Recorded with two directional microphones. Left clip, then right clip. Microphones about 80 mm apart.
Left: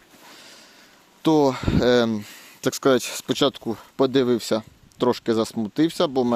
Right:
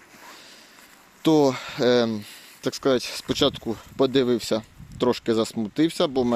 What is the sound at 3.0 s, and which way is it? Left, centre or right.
Speech, left.